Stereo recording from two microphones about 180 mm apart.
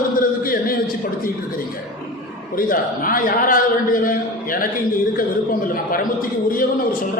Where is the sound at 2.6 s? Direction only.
50° left (ahead or behind).